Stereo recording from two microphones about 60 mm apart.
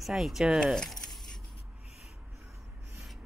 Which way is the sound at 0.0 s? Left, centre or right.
Centre.